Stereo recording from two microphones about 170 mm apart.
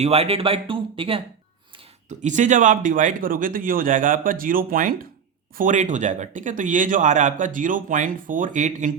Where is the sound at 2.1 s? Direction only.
45° right (ahead or behind).